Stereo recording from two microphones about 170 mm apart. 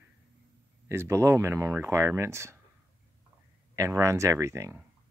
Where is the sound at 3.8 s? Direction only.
20° right (ahead or behind).